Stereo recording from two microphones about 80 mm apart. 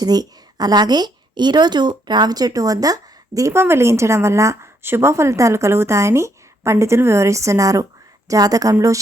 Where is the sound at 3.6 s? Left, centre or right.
Right.